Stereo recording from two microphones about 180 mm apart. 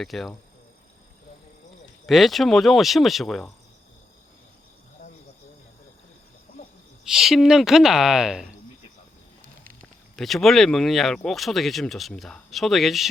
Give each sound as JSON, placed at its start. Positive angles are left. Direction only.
{"t": 0.0, "sound": "speech", "side_deg": 0}
{"t": 2.0, "sound": "speech", "side_deg": 0}
{"t": 7.0, "sound": "speech", "side_deg": 0}
{"t": 10.2, "sound": "speech", "side_deg": 0}